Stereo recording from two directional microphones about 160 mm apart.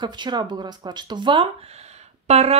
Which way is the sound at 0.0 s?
30° right (ahead or behind).